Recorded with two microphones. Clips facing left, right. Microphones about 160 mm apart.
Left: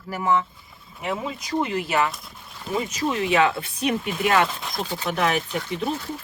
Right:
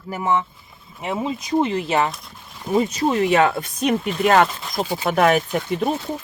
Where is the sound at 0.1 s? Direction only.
20° right (ahead or behind).